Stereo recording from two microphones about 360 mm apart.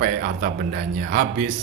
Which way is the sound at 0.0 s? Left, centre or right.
Right.